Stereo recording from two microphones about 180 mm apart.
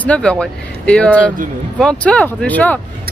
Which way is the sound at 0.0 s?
5° left (ahead or behind).